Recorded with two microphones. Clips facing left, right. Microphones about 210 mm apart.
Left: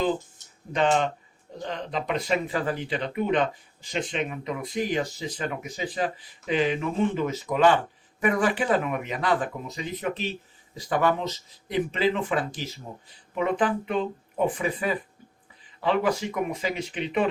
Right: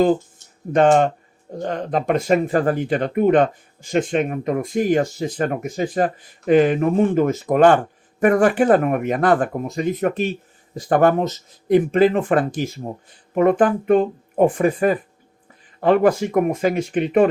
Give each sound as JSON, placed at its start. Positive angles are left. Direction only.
{"t": 0.7, "sound": "speech", "side_deg": -50}